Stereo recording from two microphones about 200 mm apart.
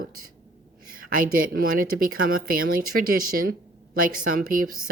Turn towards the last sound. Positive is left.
turn(degrees=-90)